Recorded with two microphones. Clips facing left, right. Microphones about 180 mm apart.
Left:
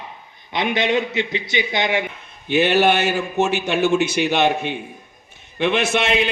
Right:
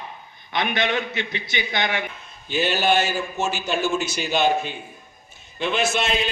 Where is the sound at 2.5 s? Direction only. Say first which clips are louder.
Left 5 dB; 65° left (ahead or behind).